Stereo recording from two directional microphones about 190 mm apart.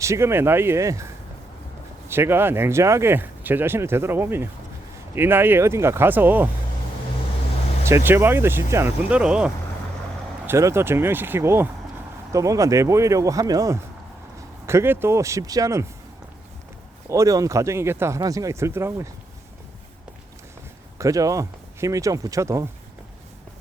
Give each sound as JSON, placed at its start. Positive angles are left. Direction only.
{"t": 0.0, "sound": "speech", "side_deg": -15}
{"t": 2.0, "sound": "speech", "side_deg": -10}
{"t": 7.9, "sound": "speech", "side_deg": -15}
{"t": 17.1, "sound": "speech", "side_deg": -15}
{"t": 21.0, "sound": "speech", "side_deg": -15}